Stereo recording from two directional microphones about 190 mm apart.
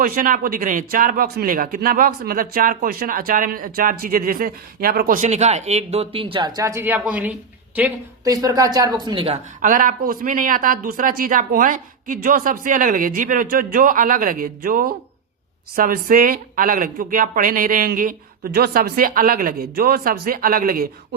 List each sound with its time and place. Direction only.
0.0 s a woman's voice: 50° right (ahead or behind); by 9.4 s 30° right (ahead or behind)
9.6 s speech: 45° right (ahead or behind)